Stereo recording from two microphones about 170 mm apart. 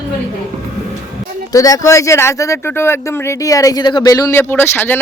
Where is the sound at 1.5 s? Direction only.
20° left (ahead or behind).